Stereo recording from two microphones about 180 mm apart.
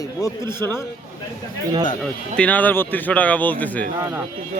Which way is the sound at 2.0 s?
5° left (ahead or behind).